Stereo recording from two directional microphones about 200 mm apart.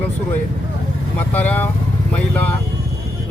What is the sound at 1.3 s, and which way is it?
Speech, 10° left (ahead or behind).